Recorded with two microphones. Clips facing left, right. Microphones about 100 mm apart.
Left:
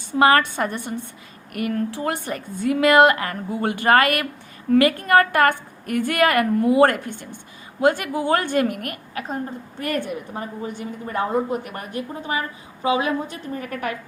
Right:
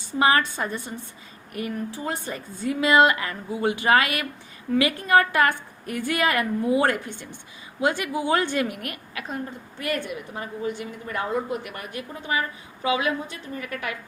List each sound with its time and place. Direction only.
0.1 s a woman's voice: 55° left (ahead or behind)